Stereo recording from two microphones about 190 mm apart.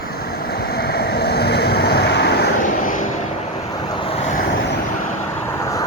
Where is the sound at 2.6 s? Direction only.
45° left (ahead or behind).